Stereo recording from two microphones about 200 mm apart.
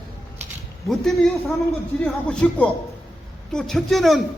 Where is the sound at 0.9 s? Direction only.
Centre (ahead or behind).